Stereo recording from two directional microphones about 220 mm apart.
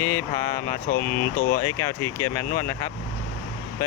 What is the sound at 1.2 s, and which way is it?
Speech, 45° left (ahead or behind).